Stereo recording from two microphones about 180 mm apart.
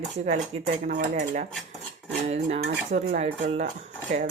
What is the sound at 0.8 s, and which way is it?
Speech, 45° right (ahead or behind).